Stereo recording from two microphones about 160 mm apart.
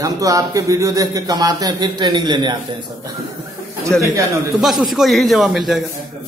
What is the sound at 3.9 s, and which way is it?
A man's voice, 5° left (ahead or behind).